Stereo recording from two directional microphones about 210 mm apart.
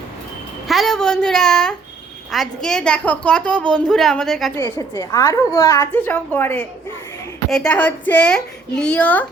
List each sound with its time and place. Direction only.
0.7 s a woman's voice: centre (ahead or behind)
4.5 s a child's voice: 15° left (ahead or behind)